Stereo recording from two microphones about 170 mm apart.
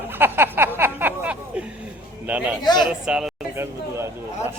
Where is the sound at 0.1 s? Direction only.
10° right (ahead or behind).